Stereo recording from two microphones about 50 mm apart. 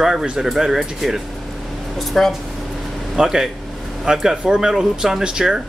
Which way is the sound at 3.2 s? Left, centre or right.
Centre.